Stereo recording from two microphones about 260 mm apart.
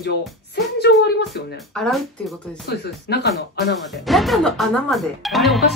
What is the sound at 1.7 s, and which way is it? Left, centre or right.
Speech, centre.